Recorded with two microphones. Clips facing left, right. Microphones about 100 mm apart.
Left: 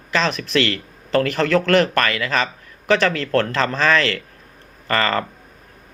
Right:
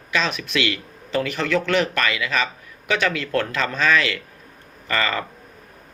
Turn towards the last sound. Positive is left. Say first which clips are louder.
# left 4 dB
turn(degrees=40)  # may be behind; listen again after turning